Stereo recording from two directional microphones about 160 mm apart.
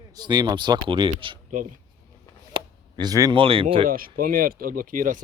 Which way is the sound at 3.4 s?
35° right (ahead or behind).